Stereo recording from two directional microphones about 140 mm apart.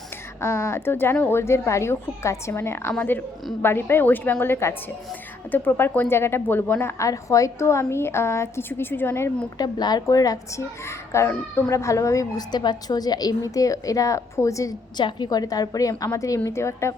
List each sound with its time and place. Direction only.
0.4 s a woman's voice: 20° left (ahead or behind)
9.6 s a child's voice: 30° left (ahead or behind)